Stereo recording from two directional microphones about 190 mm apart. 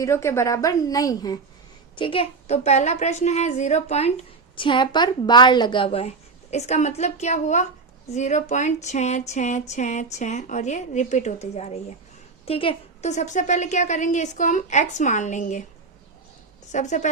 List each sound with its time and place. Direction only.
0.0 s a woman's voice: 15° left (ahead or behind); by 15.6 s 40° left (ahead or behind)
16.7 s a woman's voice: 40° left (ahead or behind)